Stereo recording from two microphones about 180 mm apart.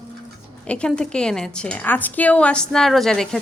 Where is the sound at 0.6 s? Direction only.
5° left (ahead or behind).